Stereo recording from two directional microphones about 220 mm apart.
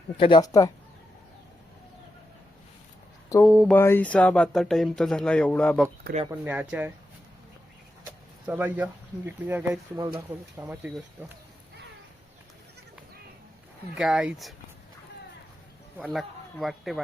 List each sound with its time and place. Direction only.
0.2 s speech: 20° left (ahead or behind)
3.4 s speech: 5° right (ahead or behind)
3.7 s speech: 10° left (ahead or behind)
6.3 s speech: 10° right (ahead or behind)
8.4 s speech: 10° right (ahead or behind)
13.9 s speech: 5° right (ahead or behind)
16.0 s a man's voice: centre (ahead or behind)